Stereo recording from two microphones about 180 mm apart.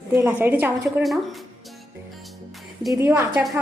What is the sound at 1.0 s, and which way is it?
Speech, centre (ahead or behind).